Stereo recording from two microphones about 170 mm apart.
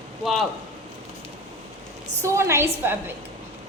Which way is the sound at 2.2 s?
15° right (ahead or behind).